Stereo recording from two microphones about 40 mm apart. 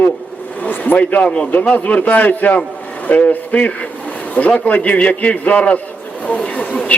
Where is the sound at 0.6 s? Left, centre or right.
Left.